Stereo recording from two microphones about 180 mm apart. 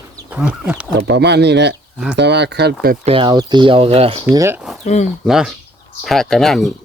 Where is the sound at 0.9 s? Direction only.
70° right (ahead or behind).